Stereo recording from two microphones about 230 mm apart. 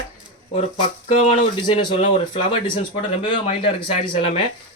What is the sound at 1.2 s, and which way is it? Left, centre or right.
Speech, left.